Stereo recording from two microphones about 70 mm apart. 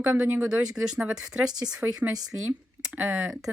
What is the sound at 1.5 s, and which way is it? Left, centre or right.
Speech, right.